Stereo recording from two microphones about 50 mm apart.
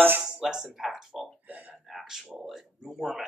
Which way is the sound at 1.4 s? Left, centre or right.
Right.